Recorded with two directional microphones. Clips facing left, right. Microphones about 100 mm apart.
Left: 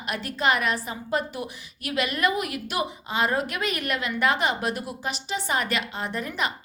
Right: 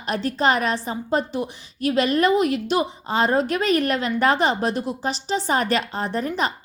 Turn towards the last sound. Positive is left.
turn(degrees=-35)  # may be behind; listen again after turning